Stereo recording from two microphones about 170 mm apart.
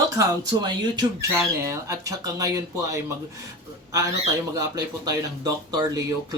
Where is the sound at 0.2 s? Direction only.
20° right (ahead or behind).